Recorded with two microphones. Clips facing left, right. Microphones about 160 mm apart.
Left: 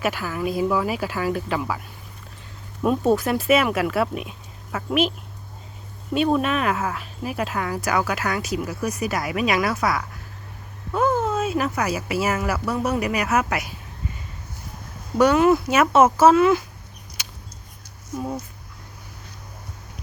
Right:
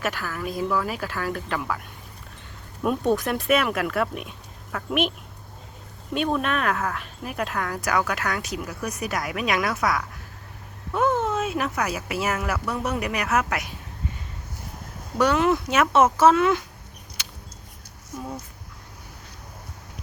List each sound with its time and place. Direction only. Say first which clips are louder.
0.0 s speech: left 4 dB; 10° left (ahead or behind)
2.8 s speech: left 3 dB; centre (ahead or behind)
6.1 s speech: left 4 dB; 5° left (ahead or behind)
15.2 s speech: left 4 dB; 5° left (ahead or behind)
17.2 s a sound: left 1 dB; 10° left (ahead or behind)